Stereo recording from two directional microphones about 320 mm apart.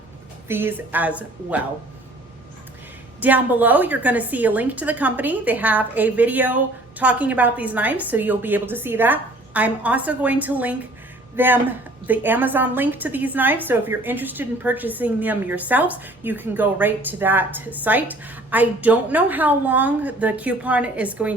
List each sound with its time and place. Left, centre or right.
0.4 s a woman's voice: centre
3.2 s a woman's voice: centre